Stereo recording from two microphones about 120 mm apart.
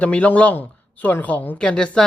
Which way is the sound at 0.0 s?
10° left (ahead or behind).